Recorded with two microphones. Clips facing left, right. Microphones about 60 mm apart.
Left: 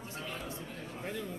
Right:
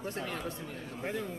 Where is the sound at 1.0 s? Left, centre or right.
Right.